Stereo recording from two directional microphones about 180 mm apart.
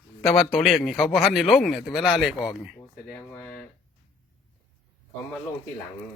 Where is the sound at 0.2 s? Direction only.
Centre (ahead or behind).